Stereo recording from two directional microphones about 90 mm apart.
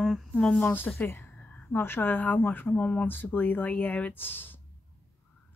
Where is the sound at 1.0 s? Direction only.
25° left (ahead or behind).